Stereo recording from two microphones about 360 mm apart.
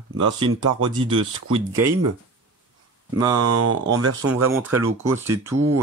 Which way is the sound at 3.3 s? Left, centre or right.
Right.